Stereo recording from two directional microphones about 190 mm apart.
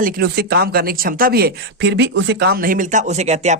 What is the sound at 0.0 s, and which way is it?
Speech, 55° right (ahead or behind).